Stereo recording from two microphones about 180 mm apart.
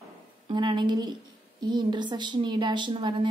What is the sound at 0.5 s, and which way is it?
A woman's voice, 25° right (ahead or behind).